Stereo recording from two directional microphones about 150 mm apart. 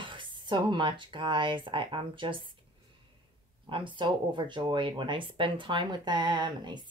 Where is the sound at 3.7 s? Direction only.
35° right (ahead or behind).